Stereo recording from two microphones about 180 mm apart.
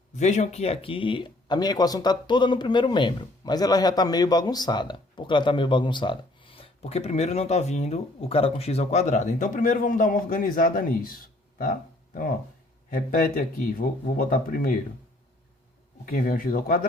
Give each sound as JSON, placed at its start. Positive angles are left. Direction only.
{"t": 0.2, "sound": "speech", "side_deg": 40}
{"t": 16.0, "sound": "speech", "side_deg": 55}